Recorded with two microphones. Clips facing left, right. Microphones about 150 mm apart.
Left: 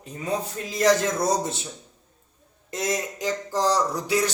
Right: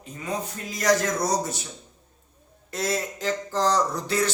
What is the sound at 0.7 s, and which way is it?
Speech, 25° left (ahead or behind).